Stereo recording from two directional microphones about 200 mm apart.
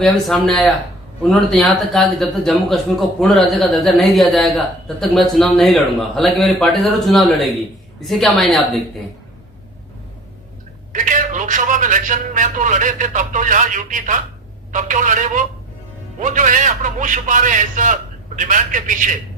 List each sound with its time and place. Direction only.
0.0 s a man's voice: centre (ahead or behind)
10.9 s a man's voice: 40° right (ahead or behind)